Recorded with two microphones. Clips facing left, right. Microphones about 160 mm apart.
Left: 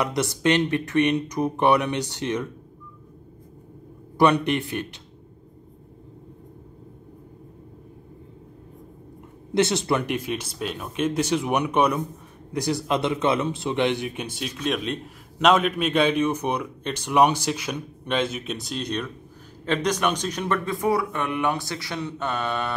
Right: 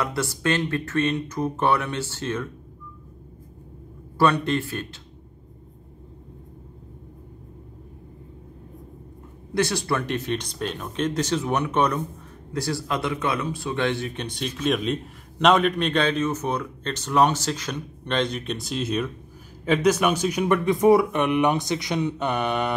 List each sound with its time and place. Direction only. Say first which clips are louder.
0.0 s speech: left 3 dB; 20° left (ahead or behind)
4.2 s speech: left 1 dB; 15° left (ahead or behind)
9.5 s speech: left 2 dB; 20° left (ahead or behind); by 22.7 s 15° right (ahead or behind)